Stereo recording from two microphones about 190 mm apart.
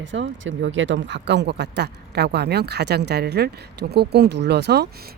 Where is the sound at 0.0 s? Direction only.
75° right (ahead or behind).